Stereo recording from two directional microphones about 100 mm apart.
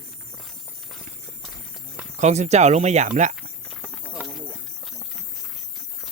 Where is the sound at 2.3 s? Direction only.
90° right.